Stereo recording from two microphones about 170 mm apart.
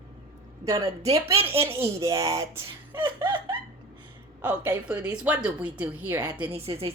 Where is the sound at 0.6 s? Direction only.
20° right (ahead or behind).